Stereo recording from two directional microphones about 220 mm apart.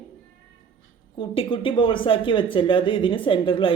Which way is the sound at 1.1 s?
25° left (ahead or behind).